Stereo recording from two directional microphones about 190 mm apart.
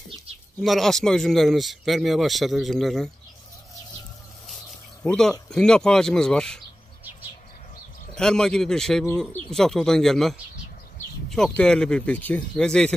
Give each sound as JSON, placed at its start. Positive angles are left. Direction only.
{"t": 0.6, "sound": "speech", "side_deg": 0}
{"t": 5.0, "sound": "speech", "side_deg": 5}
{"t": 8.1, "sound": "speech", "side_deg": 5}